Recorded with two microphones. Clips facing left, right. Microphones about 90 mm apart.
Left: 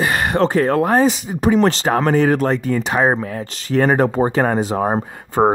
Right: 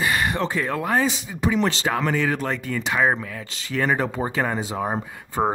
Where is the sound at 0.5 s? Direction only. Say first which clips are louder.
Left 8 dB; 50° left (ahead or behind).